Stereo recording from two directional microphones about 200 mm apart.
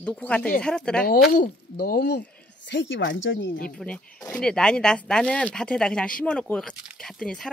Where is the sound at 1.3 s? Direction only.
55° left (ahead or behind); by 3.5 s 70° left (ahead or behind).